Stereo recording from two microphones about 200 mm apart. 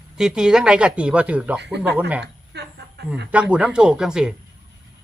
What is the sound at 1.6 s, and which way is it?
Speech, 60° right (ahead or behind).